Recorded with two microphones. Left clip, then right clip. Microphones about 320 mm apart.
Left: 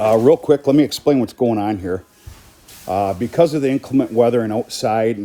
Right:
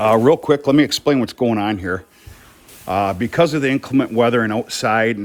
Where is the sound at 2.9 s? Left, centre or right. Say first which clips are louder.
Even; right.